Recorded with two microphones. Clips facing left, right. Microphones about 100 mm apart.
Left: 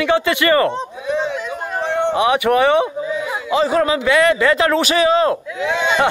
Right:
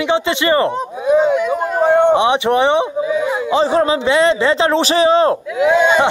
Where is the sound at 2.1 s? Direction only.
25° right (ahead or behind).